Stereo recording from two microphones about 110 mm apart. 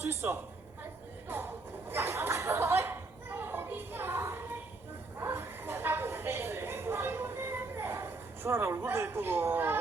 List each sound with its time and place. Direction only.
0.0 s a woman's voice: 25° right (ahead or behind)
1.3 s chuckle: 20° right (ahead or behind)
5.2 s a sound: 20° right (ahead or behind)